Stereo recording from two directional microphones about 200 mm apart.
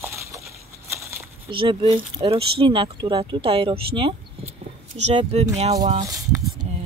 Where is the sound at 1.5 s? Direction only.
25° right (ahead or behind).